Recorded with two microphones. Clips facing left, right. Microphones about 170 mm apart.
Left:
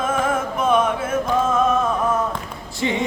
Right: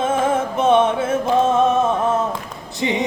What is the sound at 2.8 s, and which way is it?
Music, 20° right (ahead or behind).